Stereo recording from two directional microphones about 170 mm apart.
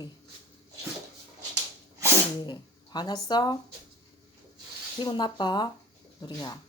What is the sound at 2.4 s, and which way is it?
Speech, 25° left (ahead or behind).